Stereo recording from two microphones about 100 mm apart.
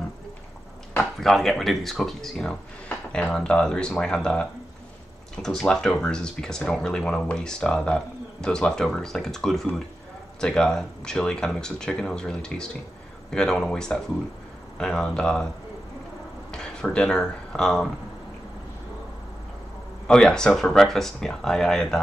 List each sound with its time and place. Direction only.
0.9 s speech: 5° left (ahead or behind)
16.5 s speech: 10° left (ahead or behind)
20.1 s speech: 5° left (ahead or behind)